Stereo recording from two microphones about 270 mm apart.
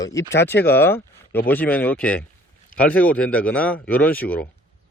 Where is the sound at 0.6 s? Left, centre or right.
Centre.